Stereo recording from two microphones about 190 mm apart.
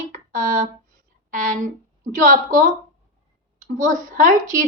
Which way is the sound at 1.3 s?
40° right (ahead or behind).